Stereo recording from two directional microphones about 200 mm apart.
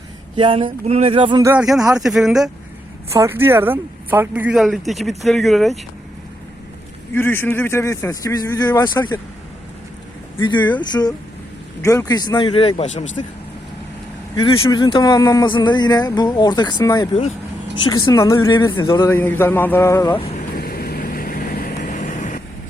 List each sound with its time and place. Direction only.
0.3 s speech: 25° right (ahead or behind)
1.5 s speech: 5° right (ahead or behind)
3.1 s speech: 15° right (ahead or behind)
7.1 s speech: 10° left (ahead or behind)
10.4 s speech: 25° left (ahead or behind)
14.3 s speech: 25° left (ahead or behind)
20.3 s vehicle: 50° left (ahead or behind)